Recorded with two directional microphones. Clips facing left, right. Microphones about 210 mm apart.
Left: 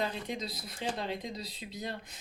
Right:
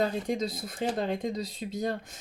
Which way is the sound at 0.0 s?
45° right (ahead or behind).